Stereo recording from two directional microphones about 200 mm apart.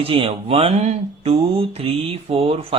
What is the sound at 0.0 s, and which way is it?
Speech, 30° right (ahead or behind).